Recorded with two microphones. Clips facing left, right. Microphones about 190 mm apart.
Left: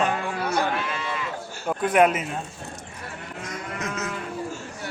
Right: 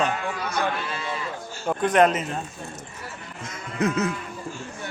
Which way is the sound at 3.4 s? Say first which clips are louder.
Right 7 dB; 30° right (ahead or behind).